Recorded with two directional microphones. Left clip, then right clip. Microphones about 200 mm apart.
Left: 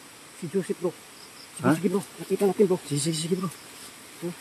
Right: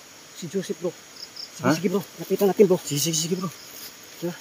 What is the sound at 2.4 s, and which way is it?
Speech, 45° right (ahead or behind).